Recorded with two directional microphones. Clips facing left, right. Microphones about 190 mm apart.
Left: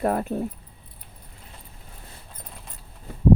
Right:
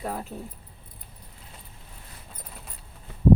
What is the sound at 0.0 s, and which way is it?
Speech, 60° left (ahead or behind).